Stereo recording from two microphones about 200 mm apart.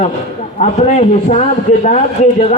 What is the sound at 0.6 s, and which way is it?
A man's voice, 35° left (ahead or behind).